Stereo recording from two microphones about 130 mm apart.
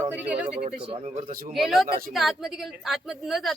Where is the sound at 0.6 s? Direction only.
45° right (ahead or behind); by 1.5 s 80° right.